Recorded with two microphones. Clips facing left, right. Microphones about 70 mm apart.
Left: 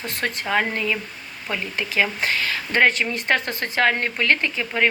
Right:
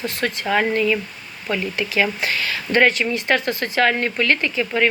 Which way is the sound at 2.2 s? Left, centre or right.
Left.